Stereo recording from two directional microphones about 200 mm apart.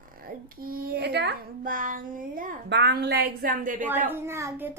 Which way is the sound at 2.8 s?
55° right (ahead or behind).